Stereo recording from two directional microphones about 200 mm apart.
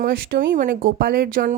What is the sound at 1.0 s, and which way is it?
Speech, 45° right (ahead or behind).